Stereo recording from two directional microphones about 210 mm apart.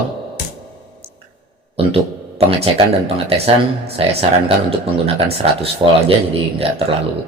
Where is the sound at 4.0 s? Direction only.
25° right (ahead or behind).